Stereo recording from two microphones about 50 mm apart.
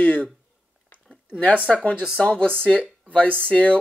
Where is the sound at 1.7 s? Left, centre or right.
Left.